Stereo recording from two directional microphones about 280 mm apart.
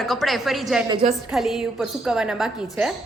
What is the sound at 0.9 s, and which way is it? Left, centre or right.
Speech, right.